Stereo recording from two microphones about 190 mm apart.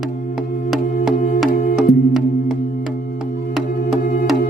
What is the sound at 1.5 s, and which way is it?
Music, 50° left (ahead or behind).